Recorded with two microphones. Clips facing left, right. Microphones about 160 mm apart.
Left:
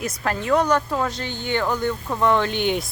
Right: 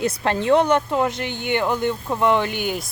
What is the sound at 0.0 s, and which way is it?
Speech, 30° right (ahead or behind).